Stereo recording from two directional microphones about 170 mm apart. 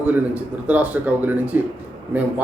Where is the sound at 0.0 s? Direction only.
10° right (ahead or behind).